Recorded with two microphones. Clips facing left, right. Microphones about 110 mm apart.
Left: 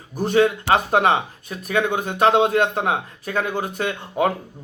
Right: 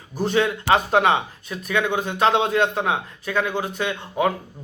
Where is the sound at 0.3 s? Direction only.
50° left (ahead or behind).